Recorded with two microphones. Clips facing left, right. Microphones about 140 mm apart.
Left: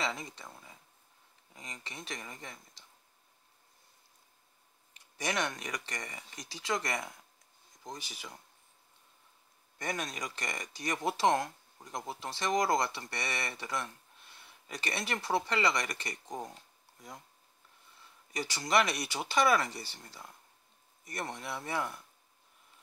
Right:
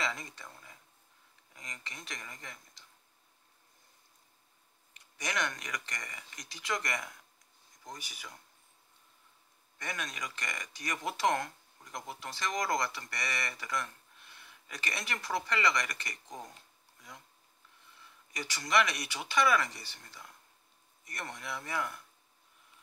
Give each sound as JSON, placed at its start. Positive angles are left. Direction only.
{"t": 0.0, "sound": "speech", "side_deg": 20}
{"t": 5.1, "sound": "speech", "side_deg": 30}
{"t": 9.8, "sound": "speech", "side_deg": 35}
{"t": 18.3, "sound": "speech", "side_deg": 30}